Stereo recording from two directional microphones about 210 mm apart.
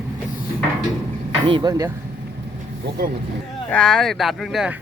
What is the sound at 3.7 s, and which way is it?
Speech, 5° left (ahead or behind).